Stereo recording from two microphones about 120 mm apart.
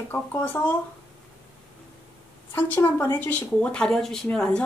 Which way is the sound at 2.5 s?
15° left (ahead or behind).